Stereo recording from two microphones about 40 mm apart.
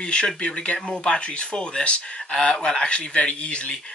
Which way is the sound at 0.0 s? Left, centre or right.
Left.